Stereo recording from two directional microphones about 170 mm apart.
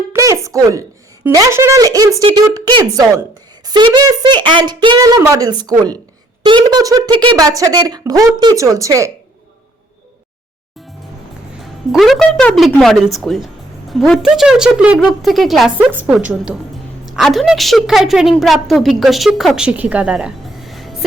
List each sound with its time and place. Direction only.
0.1 s a woman's voice: 20° right (ahead or behind)
11.6 s a woman's voice: centre (ahead or behind)